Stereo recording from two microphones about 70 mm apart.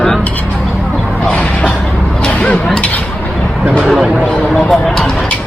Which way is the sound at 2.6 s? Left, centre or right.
Centre.